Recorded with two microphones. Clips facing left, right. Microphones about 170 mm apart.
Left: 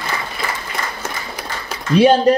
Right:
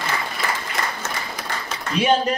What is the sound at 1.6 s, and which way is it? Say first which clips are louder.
Speech: left 8 dB; 35° left (ahead or behind).